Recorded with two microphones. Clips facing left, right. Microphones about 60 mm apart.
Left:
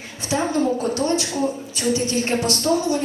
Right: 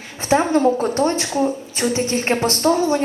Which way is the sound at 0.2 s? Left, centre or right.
Right.